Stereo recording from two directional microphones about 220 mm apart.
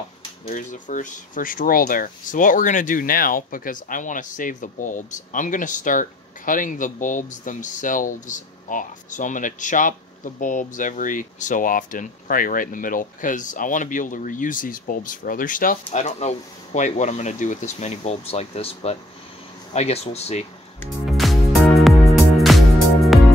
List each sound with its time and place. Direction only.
0.5 s speech: 35° left (ahead or behind)
21.1 s music: centre (ahead or behind)